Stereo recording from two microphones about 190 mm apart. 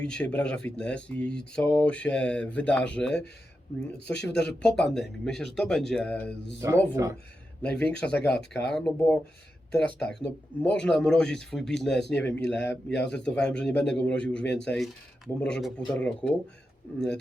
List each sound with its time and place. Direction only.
0.0 s speech: 5° left (ahead or behind)
4.1 s speech: 65° left (ahead or behind)
4.6 s speech: 5° left (ahead or behind)
6.6 s speech: 15° right (ahead or behind)
7.6 s speech: 5° left (ahead or behind)